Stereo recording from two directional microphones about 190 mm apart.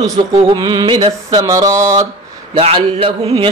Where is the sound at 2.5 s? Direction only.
30° right (ahead or behind).